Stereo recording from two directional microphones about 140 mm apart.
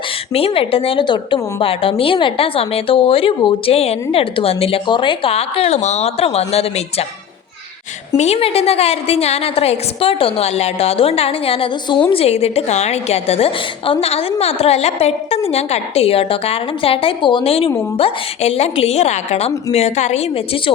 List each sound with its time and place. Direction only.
0.3 s a woman's voice: 40° left (ahead or behind)
8.1 s a woman's voice: 50° left (ahead or behind)